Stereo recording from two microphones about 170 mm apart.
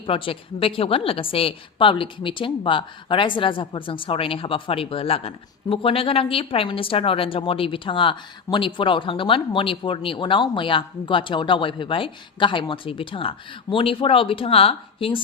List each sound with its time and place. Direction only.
0.0 s a woman's voice: 30° left (ahead or behind)